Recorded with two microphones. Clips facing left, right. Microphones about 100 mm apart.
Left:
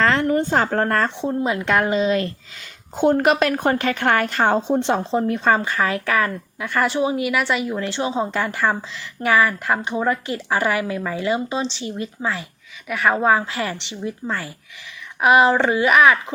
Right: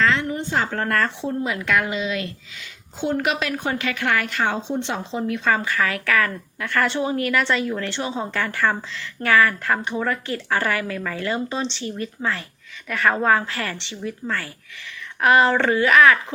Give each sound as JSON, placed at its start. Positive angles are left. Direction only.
{"t": 0.0, "sound": "a woman's voice", "side_deg": 45}